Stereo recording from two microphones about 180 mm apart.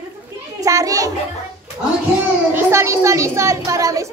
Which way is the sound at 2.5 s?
15° right (ahead or behind).